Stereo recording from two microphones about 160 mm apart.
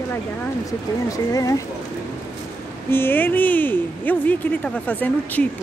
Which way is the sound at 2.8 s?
15° left (ahead or behind).